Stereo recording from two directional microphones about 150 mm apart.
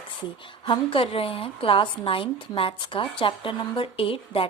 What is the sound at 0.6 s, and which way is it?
Speech, 35° left (ahead or behind).